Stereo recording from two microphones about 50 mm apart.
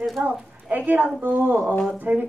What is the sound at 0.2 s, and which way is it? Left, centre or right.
Speech, right.